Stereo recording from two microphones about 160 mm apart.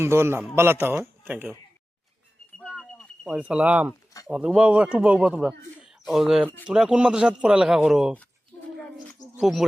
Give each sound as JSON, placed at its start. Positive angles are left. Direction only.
{"t": 0.0, "sound": "a man's voice", "side_deg": -15}
{"t": 2.6, "sound": "a sound", "side_deg": -5}
{"t": 3.0, "sound": "a man's voice", "side_deg": -5}
{"t": 9.4, "sound": "a man's voice", "side_deg": 0}